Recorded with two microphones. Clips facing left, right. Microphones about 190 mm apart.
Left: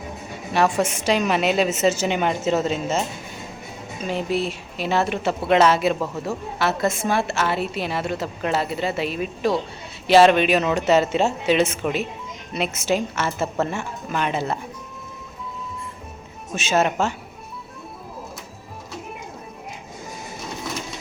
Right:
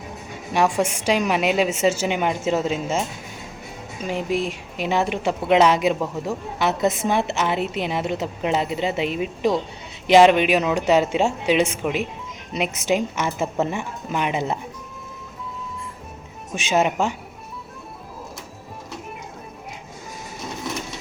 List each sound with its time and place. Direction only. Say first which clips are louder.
0.5 s speech: even; 10° right (ahead or behind)
4.0 s speech: even; 15° right (ahead or behind)
16.6 s speech: even; 15° right (ahead or behind)